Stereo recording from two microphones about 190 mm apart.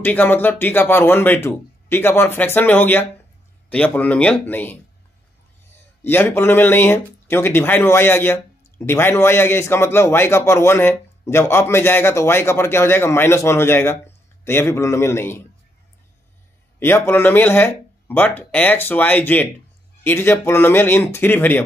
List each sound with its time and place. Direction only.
0.0 s speech: 10° left (ahead or behind)
6.0 s speech: 10° left (ahead or behind)
16.8 s speech: 10° left (ahead or behind)